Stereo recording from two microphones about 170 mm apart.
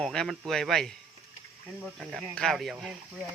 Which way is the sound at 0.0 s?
5° left (ahead or behind).